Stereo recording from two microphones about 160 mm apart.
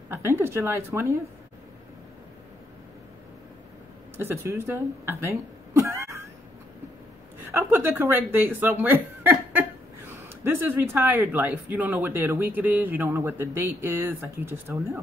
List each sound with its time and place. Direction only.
0.1 s speech: 15° right (ahead or behind)
4.2 s speech: 15° right (ahead or behind)
7.5 s speech: 15° right (ahead or behind)